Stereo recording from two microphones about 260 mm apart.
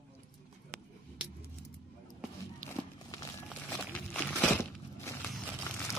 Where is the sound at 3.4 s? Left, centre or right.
Centre.